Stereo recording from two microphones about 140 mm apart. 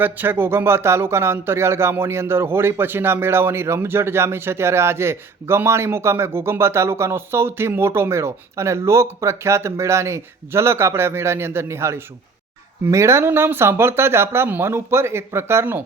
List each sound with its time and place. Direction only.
0.0 s speech: 15° right (ahead or behind)